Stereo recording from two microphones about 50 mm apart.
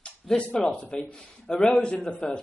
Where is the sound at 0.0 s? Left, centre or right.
Centre.